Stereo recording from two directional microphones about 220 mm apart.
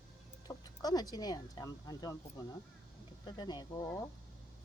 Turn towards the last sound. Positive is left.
turn(degrees=15)  # may be behind; listen again after turning